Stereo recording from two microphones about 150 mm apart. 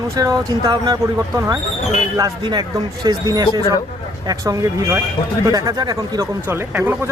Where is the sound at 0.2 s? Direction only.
25° right (ahead or behind).